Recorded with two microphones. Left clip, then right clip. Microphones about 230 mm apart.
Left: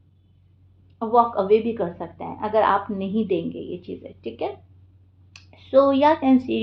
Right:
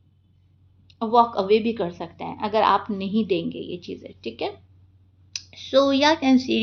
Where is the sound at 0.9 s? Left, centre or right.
Right.